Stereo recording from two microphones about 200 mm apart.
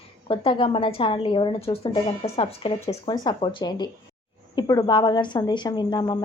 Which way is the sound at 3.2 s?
20° left (ahead or behind).